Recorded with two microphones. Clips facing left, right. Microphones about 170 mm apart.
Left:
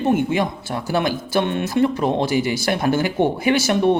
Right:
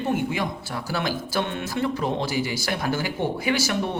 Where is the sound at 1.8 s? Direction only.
55° left (ahead or behind).